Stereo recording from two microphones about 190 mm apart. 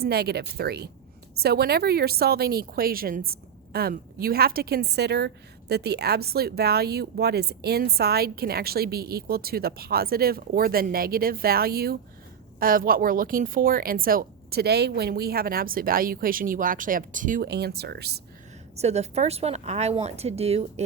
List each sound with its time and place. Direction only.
0.0 s a woman's voice: 55° right (ahead or behind)
18.8 s speech: 35° right (ahead or behind)